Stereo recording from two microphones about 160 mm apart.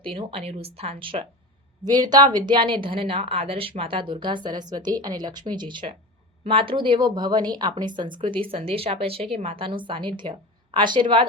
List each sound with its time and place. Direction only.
0.0 s a woman's voice: 30° right (ahead or behind)